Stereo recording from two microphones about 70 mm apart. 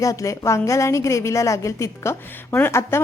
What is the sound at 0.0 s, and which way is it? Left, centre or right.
A woman's voice, left.